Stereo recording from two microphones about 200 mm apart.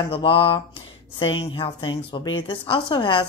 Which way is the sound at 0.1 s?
25° left (ahead or behind).